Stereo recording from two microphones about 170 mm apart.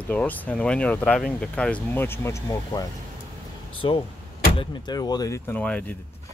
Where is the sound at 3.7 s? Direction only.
30° left (ahead or behind).